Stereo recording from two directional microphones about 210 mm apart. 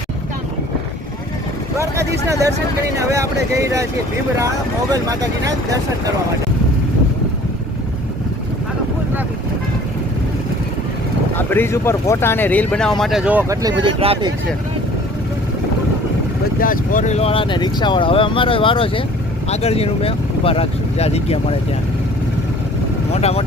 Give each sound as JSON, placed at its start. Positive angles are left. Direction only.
{"t": 3.0, "sound": "speech", "side_deg": -15}
{"t": 11.3, "sound": "speech", "side_deg": 10}
{"t": 16.6, "sound": "speech", "side_deg": 40}
{"t": 23.1, "sound": "speech", "side_deg": 30}